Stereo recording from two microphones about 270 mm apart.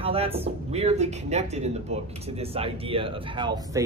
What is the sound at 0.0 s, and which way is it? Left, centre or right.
Speech, right.